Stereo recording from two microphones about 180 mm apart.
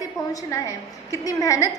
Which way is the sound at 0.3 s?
15° left (ahead or behind).